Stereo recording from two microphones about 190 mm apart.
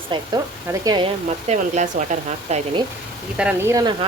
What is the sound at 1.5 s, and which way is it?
Speech, 40° right (ahead or behind).